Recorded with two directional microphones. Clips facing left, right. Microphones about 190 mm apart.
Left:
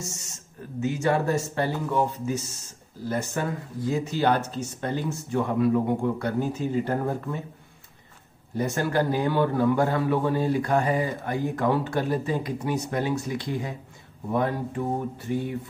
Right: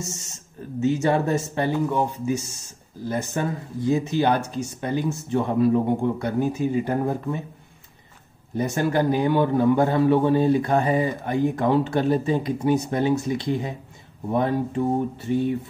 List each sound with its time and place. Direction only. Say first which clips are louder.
0.7 s a man's voice: right 3 dB; 25° right (ahead or behind)
5.3 s speech: right 3 dB; 25° right (ahead or behind)
8.5 s a man's voice: right 3 dB; 20° right (ahead or behind)